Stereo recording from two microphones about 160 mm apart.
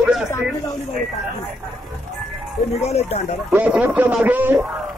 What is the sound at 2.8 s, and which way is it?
Speech, 40° left (ahead or behind).